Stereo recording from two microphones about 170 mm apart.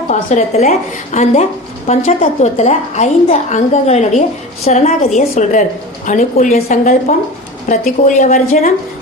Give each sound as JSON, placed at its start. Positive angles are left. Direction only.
{"t": 0.1, "sound": "a woman's voice", "side_deg": 40}